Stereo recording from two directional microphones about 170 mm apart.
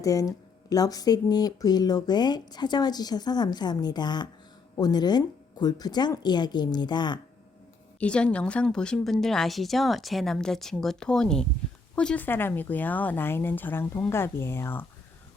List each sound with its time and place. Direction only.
0.0 s speech: 20° left (ahead or behind)
7.9 s a woman's voice: 5° left (ahead or behind)